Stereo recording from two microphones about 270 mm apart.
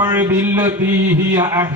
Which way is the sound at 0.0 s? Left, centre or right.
Centre.